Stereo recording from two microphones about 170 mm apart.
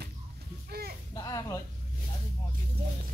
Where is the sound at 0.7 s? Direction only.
65° right (ahead or behind).